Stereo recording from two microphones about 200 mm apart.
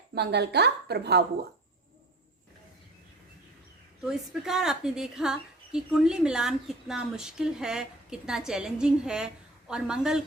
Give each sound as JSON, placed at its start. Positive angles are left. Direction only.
{"t": 0.1, "sound": "a woman's voice", "side_deg": -55}
{"t": 4.0, "sound": "a woman's voice", "side_deg": 0}